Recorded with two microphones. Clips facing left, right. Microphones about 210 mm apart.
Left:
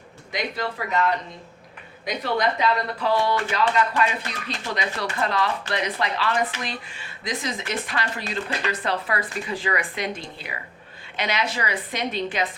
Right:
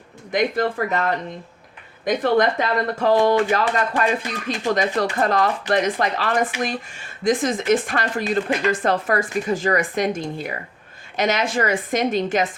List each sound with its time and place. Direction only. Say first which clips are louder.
0.3 s speech: right 8 dB; 50° right (ahead or behind)